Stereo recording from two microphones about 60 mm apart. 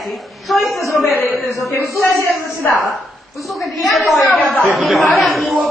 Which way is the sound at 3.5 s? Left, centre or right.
Centre.